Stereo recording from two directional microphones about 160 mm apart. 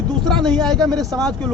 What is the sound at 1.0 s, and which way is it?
Speech, 20° right (ahead or behind).